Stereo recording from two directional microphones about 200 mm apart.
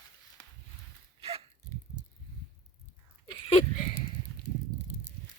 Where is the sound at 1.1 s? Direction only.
30° right (ahead or behind).